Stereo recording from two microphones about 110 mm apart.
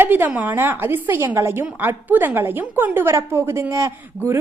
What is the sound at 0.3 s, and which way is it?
A woman's voice, 20° right (ahead or behind).